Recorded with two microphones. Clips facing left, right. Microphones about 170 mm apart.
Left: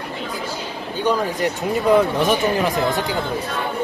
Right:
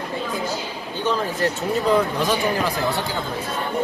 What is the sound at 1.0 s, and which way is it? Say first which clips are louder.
Speech: left 2 dB; 15° left (ahead or behind).